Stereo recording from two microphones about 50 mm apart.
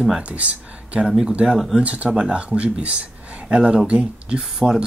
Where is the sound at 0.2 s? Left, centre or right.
Right.